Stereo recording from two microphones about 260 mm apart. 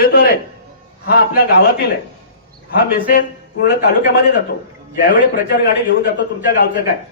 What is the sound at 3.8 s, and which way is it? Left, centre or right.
A man's voice, left.